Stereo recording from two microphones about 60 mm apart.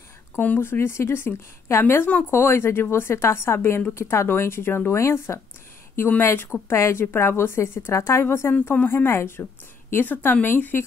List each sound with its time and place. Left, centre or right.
0.6 s a woman's voice: left